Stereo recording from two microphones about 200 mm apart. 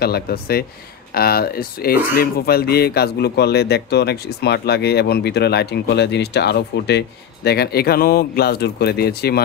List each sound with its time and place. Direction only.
0.0 s speech: 50° left (ahead or behind)